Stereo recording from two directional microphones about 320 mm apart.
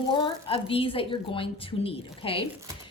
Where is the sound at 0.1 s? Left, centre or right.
Centre.